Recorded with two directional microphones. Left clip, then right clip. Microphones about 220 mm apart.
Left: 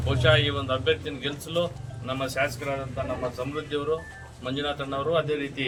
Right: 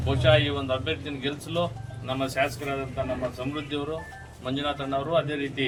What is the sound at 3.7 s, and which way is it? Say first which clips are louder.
Speech: left 3 dB; 10° left (ahead or behind).